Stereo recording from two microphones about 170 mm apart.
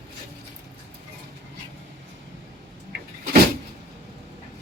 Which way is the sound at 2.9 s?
70° right (ahead or behind).